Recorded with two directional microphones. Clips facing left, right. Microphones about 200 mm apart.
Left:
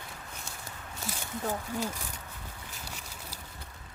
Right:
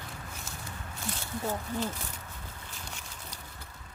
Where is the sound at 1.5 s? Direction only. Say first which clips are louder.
Even; 10° left (ahead or behind).